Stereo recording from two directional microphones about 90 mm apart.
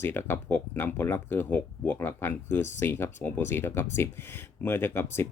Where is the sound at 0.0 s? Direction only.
25° left (ahead or behind).